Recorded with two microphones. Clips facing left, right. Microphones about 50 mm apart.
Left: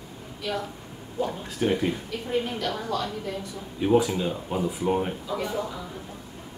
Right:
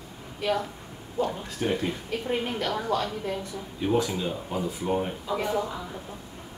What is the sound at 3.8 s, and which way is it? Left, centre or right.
Speech, centre.